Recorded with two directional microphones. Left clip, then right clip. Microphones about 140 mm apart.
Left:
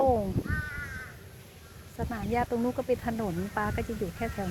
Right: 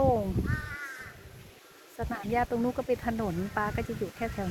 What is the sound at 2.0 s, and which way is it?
Speech, 15° right (ahead or behind).